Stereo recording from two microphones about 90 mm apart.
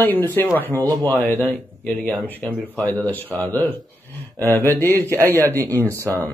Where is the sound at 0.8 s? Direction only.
40° right (ahead or behind).